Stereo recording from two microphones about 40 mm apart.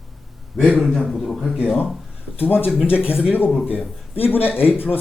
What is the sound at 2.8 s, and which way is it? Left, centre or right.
Speech, right.